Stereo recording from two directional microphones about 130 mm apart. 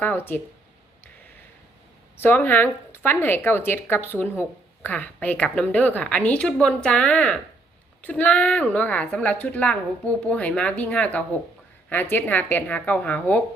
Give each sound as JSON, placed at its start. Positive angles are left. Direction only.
{"t": 0.0, "sound": "speech", "side_deg": 15}
{"t": 2.1, "sound": "speech", "side_deg": 15}